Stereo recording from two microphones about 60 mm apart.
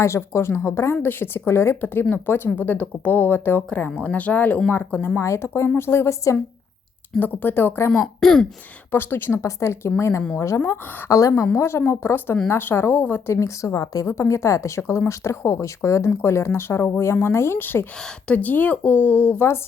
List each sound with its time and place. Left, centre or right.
0.0 s speech: left
4.7 s speech: left
5.2 s speech: left
7.2 s speech: left
8.0 s speech: centre
8.9 s speech: left
9.4 s speech: left
10.7 s a woman's voice: left
11.5 s speech: left
13.3 s a woman's voice: left
14.1 s speech: left
18.3 s speech: left